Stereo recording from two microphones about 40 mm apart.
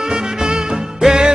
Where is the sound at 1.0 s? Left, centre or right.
Centre.